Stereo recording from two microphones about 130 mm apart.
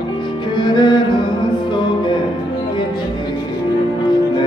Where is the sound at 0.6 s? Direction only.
35° left (ahead or behind).